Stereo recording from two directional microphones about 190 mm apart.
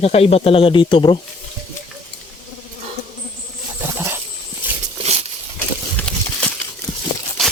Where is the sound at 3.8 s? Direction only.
10° right (ahead or behind).